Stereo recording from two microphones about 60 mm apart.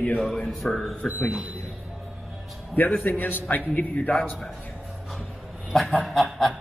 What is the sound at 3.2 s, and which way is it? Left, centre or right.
Speech, left.